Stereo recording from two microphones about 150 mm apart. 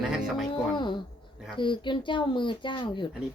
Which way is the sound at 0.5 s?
30° left (ahead or behind).